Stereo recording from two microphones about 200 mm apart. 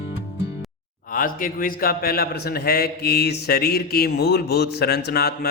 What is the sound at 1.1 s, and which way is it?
A man's voice, 45° left (ahead or behind).